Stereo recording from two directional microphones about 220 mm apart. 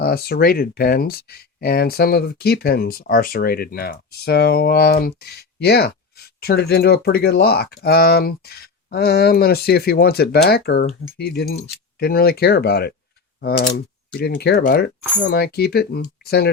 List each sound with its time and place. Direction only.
0.0 s speech: 45° left (ahead or behind)